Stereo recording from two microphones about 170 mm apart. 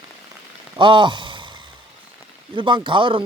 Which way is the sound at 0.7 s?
30° right (ahead or behind).